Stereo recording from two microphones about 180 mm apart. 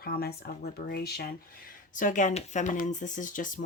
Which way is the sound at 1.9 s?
45° left (ahead or behind).